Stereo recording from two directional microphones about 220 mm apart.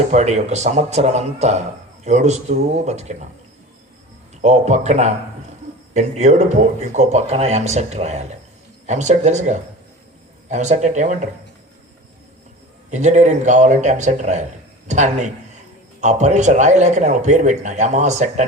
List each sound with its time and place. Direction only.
0.1 s speech: 30° right (ahead or behind)
4.4 s speech: 30° right (ahead or behind)
12.9 s speech: 30° right (ahead or behind)